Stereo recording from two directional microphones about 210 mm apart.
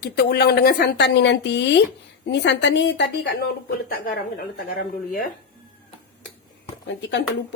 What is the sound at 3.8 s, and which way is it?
Speech, 45° left (ahead or behind).